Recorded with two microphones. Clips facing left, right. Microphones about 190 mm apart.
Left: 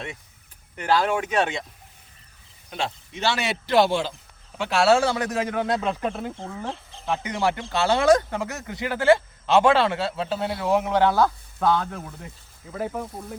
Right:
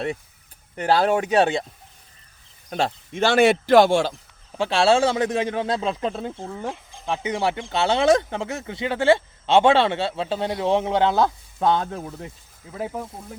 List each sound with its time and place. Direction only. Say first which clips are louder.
0.8 s speech: right 3 dB; 35° right (ahead or behind)
2.6 s speech: right 5 dB; 45° right (ahead or behind)
4.5 s speech: right 1 dB; 30° right (ahead or behind)
6.7 s a sound: right 2 dB; 15° right (ahead or behind)
7.1 s speech: right 1 dB; 25° right (ahead or behind)